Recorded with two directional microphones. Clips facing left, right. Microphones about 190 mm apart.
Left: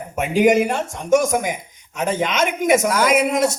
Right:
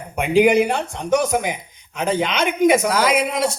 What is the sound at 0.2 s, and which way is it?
Speech, 45° left (ahead or behind).